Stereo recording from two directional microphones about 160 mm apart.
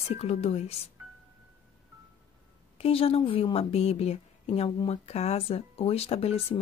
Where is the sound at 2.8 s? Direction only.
40° left (ahead or behind).